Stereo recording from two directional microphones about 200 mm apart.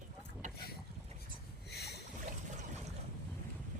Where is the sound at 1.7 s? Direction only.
55° left (ahead or behind).